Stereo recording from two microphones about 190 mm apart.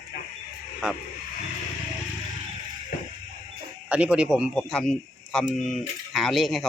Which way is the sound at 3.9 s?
5° right (ahead or behind).